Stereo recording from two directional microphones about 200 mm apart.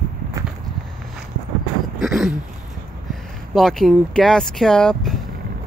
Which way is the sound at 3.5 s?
Centre (ahead or behind).